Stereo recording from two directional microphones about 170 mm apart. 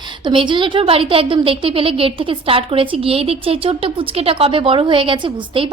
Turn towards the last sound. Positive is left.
turn(degrees=-30)  # may be behind; listen again after turning